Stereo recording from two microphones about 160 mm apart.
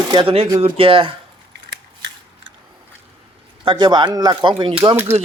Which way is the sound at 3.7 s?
30° right (ahead or behind).